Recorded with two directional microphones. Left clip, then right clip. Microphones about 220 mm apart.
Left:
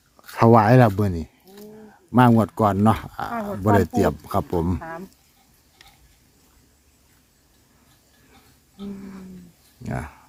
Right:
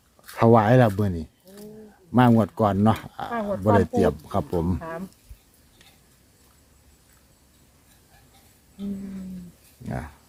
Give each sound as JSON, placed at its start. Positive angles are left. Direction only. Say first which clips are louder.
{"t": 0.3, "sound": "speech", "louder": "left 2 dB", "side_deg": 20}
{"t": 9.8, "sound": "speech", "louder": "left 3 dB", "side_deg": 20}